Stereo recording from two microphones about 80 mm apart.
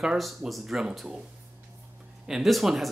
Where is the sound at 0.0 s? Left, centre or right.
Centre.